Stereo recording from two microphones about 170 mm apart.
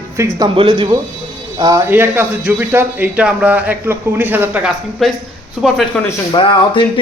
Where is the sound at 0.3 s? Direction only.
25° right (ahead or behind); by 6.0 s centre (ahead or behind).